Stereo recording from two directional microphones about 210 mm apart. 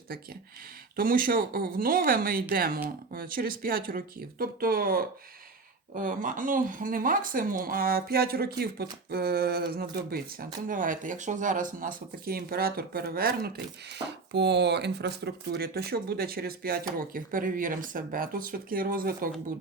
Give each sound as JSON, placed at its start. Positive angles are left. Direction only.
{"t": 0.9, "sound": "speech", "side_deg": -40}